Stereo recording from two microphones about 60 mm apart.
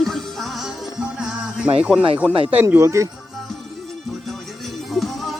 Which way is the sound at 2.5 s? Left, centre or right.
Right.